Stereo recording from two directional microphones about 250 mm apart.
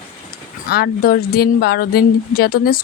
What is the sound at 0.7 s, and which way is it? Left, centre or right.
Speech, left.